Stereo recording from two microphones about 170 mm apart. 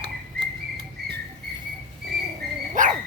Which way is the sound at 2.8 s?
50° right (ahead or behind).